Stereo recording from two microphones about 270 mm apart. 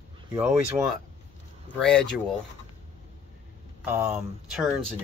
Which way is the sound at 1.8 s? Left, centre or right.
Centre.